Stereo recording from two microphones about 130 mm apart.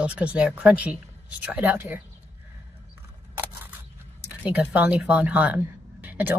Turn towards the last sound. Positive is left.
turn(degrees=-15)  # may be behind; listen again after turning